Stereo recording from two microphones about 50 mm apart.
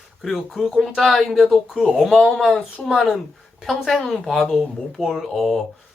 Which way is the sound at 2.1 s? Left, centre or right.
Centre.